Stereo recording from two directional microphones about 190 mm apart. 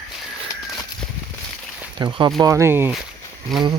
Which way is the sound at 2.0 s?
25° right (ahead or behind).